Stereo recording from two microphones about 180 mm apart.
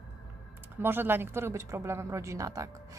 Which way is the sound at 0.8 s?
10° right (ahead or behind).